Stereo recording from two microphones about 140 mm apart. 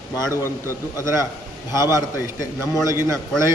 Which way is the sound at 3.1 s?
20° right (ahead or behind).